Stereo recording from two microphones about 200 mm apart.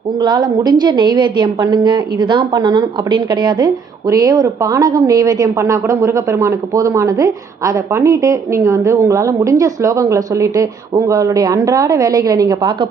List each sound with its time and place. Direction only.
0.2 s a woman's voice: 20° right (ahead or behind)